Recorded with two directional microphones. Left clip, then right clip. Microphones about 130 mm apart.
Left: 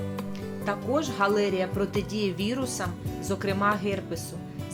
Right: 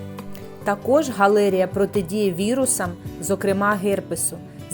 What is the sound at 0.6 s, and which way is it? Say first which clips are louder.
Speech: right 9 dB; 60° right (ahead or behind).